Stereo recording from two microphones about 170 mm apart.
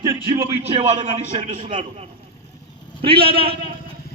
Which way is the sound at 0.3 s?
35° right (ahead or behind).